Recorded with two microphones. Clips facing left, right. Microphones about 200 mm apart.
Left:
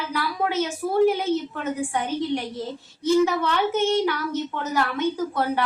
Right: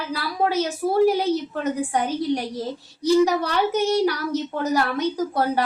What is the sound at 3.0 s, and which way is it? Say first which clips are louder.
Speech: right 2 dB; 40° right (ahead or behind).